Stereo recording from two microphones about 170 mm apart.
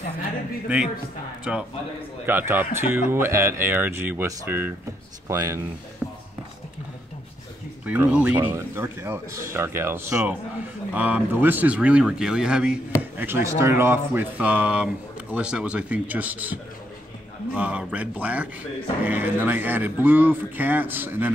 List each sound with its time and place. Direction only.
1.4 s a man's voice: 5° right (ahead or behind)
6.0 s a sound: 10° right (ahead or behind)
7.8 s a man's voice: 10° right (ahead or behind)
17.6 s a man's voice: 10° right (ahead or behind)